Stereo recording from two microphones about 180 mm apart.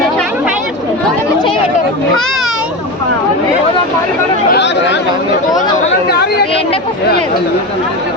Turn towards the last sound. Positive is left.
turn(degrees=30)  # may be behind; listen again after turning